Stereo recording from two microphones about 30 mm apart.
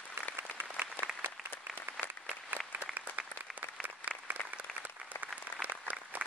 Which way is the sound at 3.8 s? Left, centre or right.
Right.